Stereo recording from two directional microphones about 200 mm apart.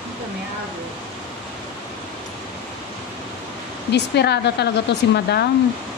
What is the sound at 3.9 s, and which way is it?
Speech, 55° left (ahead or behind).